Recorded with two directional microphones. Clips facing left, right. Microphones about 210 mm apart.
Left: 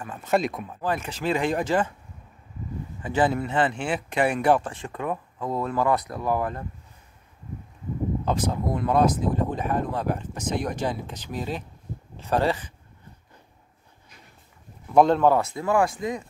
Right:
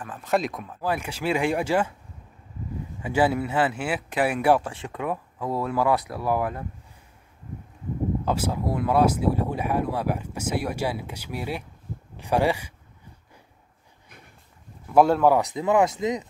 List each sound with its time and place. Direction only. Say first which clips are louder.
0.0 s speech: left 1 dB; centre (ahead or behind)
3.0 s speech: right 1 dB; 10° right (ahead or behind)
8.3 s speech: left 2 dB; 10° right (ahead or behind)
14.9 s speech: even; 5° right (ahead or behind); by 16.3 s 20° right (ahead or behind)